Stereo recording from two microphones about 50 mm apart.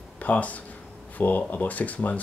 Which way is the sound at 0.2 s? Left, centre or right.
Left.